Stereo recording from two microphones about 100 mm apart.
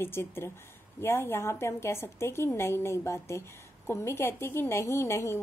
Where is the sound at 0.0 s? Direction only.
25° left (ahead or behind).